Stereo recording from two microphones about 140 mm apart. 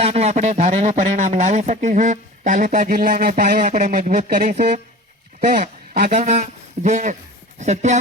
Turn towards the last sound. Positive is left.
turn(degrees=-55)  # may be behind; listen again after turning